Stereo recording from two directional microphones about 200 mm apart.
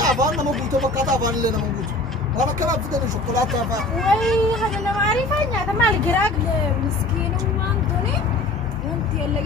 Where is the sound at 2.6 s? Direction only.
20° right (ahead or behind).